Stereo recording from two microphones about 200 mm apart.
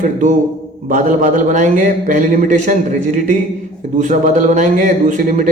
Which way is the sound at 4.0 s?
40° right (ahead or behind).